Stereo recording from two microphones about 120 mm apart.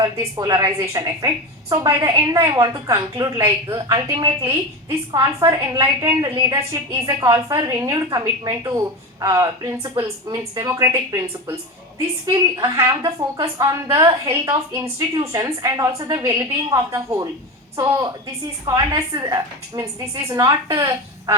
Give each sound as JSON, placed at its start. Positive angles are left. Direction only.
{"t": 0.0, "sound": "a woman's voice", "side_deg": -30}
{"t": 10.7, "sound": "a woman's voice", "side_deg": -25}